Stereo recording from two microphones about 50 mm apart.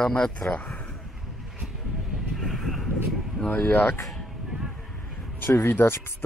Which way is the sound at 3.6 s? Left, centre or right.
Left.